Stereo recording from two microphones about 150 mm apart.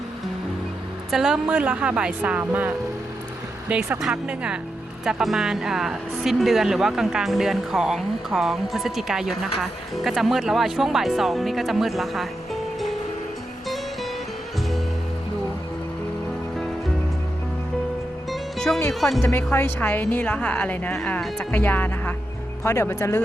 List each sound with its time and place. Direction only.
1.1 s a woman's voice: 5° right (ahead or behind)
18.3 s music: centre (ahead or behind)
18.9 s speech: centre (ahead or behind)
19.2 s a woman's voice: 15° left (ahead or behind)